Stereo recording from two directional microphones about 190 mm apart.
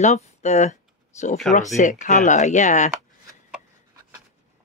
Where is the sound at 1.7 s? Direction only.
40° left (ahead or behind).